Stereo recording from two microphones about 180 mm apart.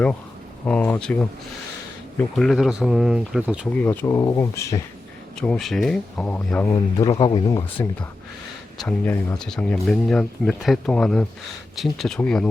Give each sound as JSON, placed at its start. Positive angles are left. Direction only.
{"t": 0.6, "sound": "speech", "side_deg": 10}
{"t": 3.7, "sound": "speech", "side_deg": 10}
{"t": 5.4, "sound": "speech", "side_deg": 5}
{"t": 7.0, "sound": "speech", "side_deg": 25}
{"t": 8.8, "sound": "speech", "side_deg": 5}